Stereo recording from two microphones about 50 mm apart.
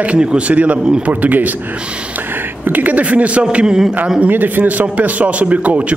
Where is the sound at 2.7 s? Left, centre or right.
Right; by 3.8 s centre.